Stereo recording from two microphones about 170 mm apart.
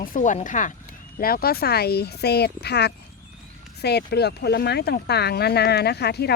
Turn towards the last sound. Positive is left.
turn(degrees=75)  # may be behind; listen again after turning